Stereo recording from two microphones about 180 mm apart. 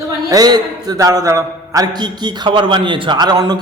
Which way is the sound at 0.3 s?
20° right (ahead or behind).